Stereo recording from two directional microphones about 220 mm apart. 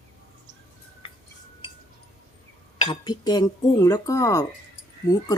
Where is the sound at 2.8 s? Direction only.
20° left (ahead or behind).